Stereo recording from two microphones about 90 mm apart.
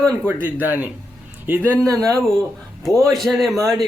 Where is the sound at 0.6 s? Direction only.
20° right (ahead or behind).